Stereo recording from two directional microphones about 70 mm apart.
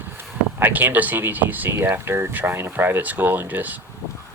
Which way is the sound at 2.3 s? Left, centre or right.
Right.